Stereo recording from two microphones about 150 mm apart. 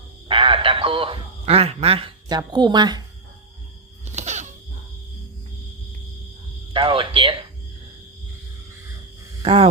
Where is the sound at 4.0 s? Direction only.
50° right (ahead or behind).